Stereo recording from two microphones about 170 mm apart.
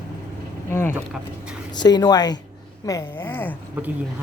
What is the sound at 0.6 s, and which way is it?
Speech, 15° left (ahead or behind).